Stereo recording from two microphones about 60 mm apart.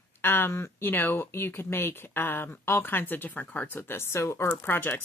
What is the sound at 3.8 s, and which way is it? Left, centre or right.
Speech, left.